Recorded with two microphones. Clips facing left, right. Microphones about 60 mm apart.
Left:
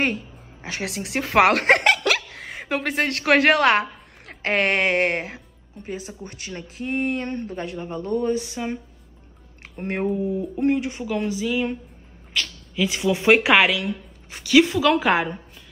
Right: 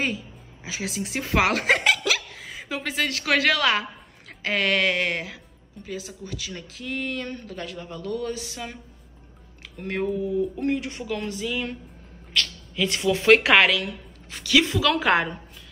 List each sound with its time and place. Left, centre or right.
0.0 s a woman's voice: left; by 13.7 s centre
14.6 s a woman's voice: centre
15.0 s a woman's voice: centre